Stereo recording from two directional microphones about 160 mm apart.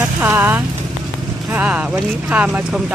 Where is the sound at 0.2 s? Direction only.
15° right (ahead or behind).